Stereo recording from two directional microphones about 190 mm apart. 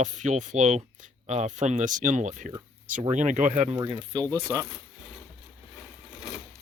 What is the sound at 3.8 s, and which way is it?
Speech, 20° right (ahead or behind).